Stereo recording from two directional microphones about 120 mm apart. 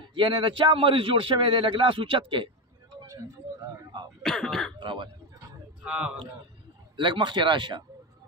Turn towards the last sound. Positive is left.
turn(degrees=-40)  # may be behind; listen again after turning